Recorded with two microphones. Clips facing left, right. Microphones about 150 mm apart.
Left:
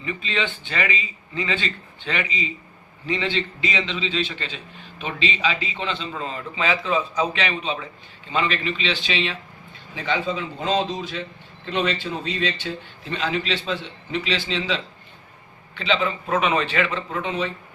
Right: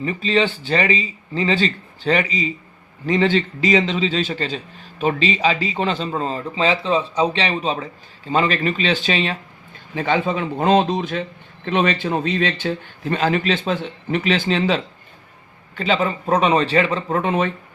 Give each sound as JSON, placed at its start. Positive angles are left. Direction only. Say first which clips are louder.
{"t": 0.0, "sound": "a man's voice", "louder": "right 8 dB", "side_deg": -40}